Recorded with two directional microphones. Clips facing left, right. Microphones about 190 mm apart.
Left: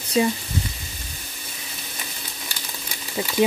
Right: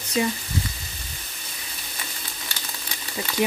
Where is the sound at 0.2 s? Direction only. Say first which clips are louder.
Left 4 dB; 30° left (ahead or behind).